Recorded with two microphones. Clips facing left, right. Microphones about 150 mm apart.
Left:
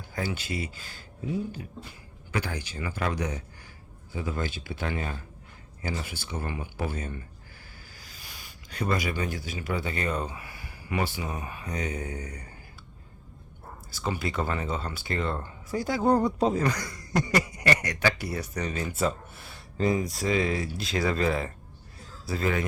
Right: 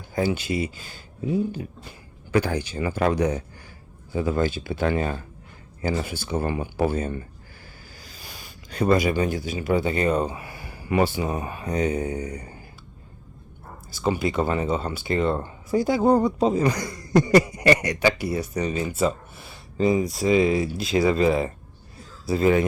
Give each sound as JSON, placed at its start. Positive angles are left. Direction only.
{"t": 0.1, "sound": "speech", "side_deg": -20}
{"t": 2.3, "sound": "speech", "side_deg": -30}
{"t": 13.9, "sound": "speech", "side_deg": -15}
{"t": 16.4, "sound": "speech", "side_deg": 0}
{"t": 16.6, "sound": "a man's voice", "side_deg": -15}